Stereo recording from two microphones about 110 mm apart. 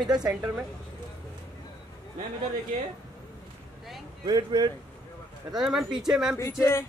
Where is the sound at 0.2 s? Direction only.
10° right (ahead or behind).